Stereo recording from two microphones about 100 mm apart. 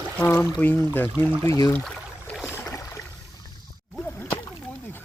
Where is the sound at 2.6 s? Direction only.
35° left (ahead or behind).